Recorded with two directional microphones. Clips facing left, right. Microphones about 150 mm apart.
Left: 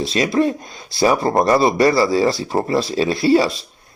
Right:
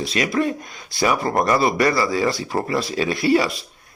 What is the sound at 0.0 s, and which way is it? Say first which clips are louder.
Speech: left 4 dB; 30° left (ahead or behind).